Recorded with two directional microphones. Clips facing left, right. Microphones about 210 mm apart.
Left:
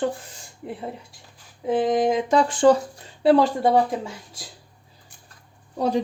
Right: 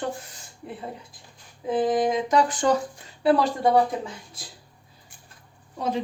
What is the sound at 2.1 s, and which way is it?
Speech, 30° left (ahead or behind).